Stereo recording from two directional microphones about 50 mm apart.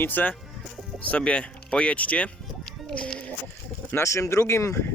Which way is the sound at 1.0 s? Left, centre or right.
Left.